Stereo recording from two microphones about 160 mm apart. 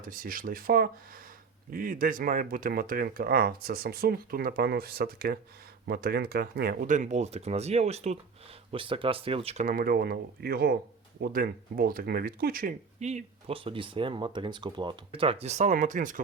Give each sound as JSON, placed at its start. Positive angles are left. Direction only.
{"t": 0.0, "sound": "speech", "side_deg": -60}
{"t": 6.8, "sound": "speech", "side_deg": -50}
{"t": 9.6, "sound": "speech", "side_deg": -70}
{"t": 13.0, "sound": "speech", "side_deg": -45}